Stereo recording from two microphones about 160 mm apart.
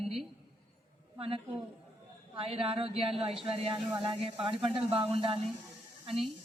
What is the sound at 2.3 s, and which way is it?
A woman's voice, 35° right (ahead or behind).